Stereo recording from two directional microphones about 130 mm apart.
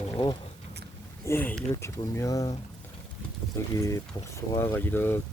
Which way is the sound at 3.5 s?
25° left (ahead or behind).